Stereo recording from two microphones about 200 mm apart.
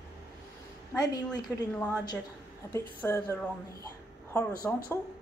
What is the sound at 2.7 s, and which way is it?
Speech, 15° left (ahead or behind).